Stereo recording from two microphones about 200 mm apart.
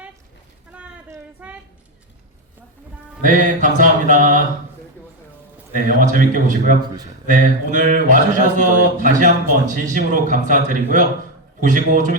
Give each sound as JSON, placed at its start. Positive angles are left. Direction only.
{"t": 0.7, "sound": "a sound", "side_deg": -10}
{"t": 3.2, "sound": "speech", "side_deg": -40}
{"t": 5.7, "sound": "speech", "side_deg": -40}